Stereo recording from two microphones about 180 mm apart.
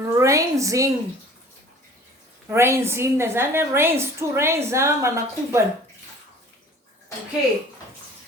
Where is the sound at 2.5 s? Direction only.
15° right (ahead or behind).